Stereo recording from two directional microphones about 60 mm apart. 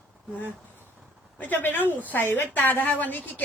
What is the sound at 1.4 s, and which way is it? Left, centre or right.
A woman's voice, left.